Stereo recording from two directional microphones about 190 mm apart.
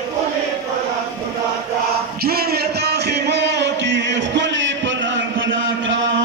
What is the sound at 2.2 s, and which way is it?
Music, 55° right (ahead or behind).